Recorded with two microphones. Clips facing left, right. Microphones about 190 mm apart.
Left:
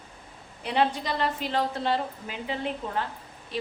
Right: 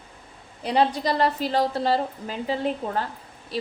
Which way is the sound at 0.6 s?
35° right (ahead or behind).